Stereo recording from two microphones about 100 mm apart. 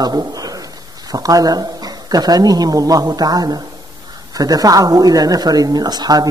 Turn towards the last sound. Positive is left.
turn(degrees=-40)  # may be behind; listen again after turning